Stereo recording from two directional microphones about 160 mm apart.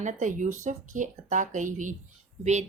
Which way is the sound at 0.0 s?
50° right (ahead or behind).